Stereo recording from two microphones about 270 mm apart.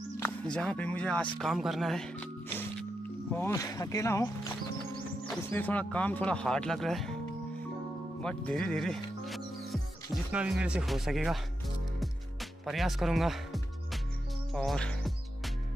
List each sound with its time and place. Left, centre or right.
0.2 s speech: centre
8.2 s speech: centre
12.0 s music: centre